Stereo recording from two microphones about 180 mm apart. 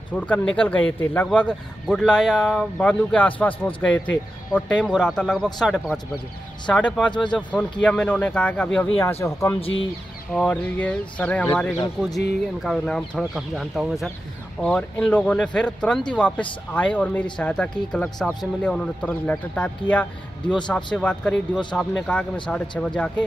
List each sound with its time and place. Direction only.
0.1 s speech: 10° left (ahead or behind)
9.2 s speech: 15° left (ahead or behind)
9.6 s speech: 30° left (ahead or behind)
10.3 s speech: 5° left (ahead or behind)
12.6 s speech: 5° left (ahead or behind)